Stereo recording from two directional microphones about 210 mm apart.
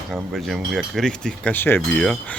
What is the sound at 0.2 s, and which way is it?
Speech, centre (ahead or behind).